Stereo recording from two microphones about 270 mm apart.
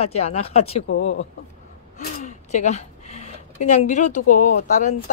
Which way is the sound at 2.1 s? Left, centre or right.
Left.